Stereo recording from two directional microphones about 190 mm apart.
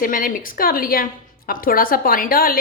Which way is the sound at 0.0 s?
45° left (ahead or behind).